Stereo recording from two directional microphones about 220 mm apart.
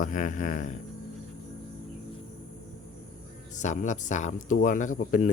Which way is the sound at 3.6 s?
35° left (ahead or behind).